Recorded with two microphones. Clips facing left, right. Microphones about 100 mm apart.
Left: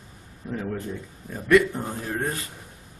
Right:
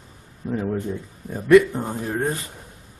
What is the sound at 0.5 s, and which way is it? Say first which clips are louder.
Speech: right 5 dB; 15° right (ahead or behind).